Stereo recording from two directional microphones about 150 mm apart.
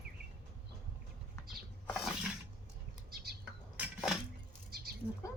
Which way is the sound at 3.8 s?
5° right (ahead or behind).